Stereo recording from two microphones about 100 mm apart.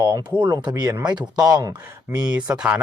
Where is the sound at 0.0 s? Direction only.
45° right (ahead or behind).